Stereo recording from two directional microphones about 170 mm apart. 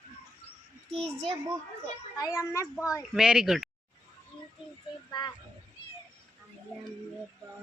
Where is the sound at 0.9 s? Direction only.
5° left (ahead or behind).